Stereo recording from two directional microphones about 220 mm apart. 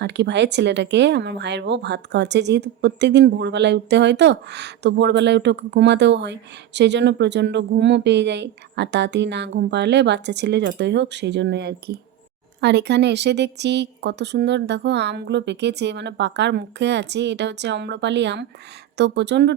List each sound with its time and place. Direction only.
0.0 s speech: 50° right (ahead or behind)